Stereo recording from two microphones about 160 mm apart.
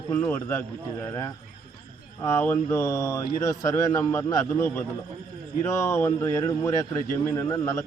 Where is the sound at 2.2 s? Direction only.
15° left (ahead or behind).